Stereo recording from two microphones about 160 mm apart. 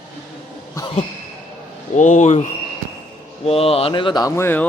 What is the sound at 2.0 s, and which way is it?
Speech, 50° left (ahead or behind).